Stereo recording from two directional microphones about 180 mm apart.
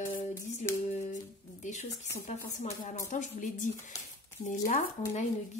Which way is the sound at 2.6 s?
40° left (ahead or behind).